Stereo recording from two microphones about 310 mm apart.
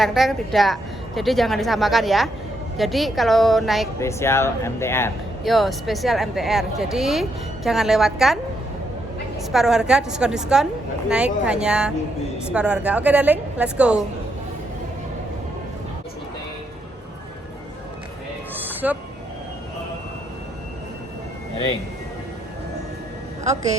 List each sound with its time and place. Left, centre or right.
0.0 s speech: centre
9.5 s speech: centre
18.5 s a sound: centre
23.4 s a woman's voice: right